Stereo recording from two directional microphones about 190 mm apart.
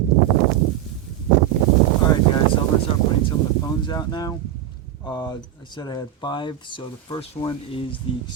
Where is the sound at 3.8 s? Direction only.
20° left (ahead or behind).